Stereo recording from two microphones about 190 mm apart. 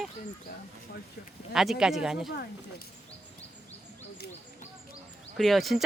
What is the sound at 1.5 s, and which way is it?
Speech, centre (ahead or behind).